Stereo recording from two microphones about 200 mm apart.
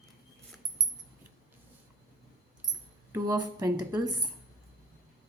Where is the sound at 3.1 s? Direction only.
15° right (ahead or behind).